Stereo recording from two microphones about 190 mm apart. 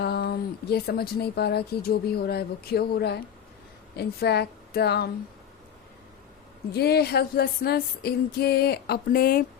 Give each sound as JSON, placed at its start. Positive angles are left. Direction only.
{"t": 0.0, "sound": "speech", "side_deg": 55}
{"t": 6.7, "sound": "speech", "side_deg": 60}